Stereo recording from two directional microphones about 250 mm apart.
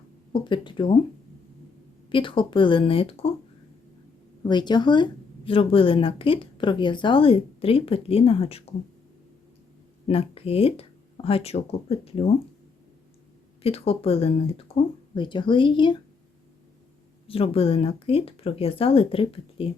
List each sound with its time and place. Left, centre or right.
0.4 s speech: centre
2.0 s speech: centre
4.4 s speech: centre
10.1 s speech: left
13.6 s speech: left
17.2 s speech: left